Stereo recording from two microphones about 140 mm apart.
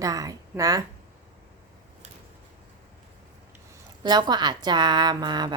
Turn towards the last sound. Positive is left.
turn(degrees=-30)  # may be behind; listen again after turning